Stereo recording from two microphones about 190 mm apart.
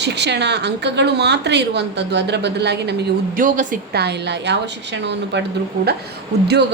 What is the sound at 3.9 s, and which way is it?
A woman's voice, 60° right (ahead or behind).